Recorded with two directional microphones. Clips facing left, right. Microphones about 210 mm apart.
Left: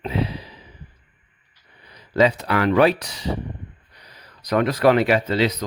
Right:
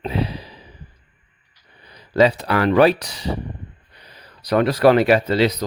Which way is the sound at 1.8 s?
35° right (ahead or behind).